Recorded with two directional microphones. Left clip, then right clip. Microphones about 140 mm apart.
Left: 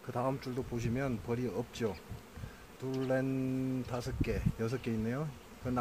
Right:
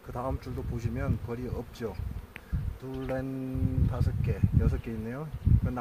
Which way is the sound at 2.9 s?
45° left (ahead or behind).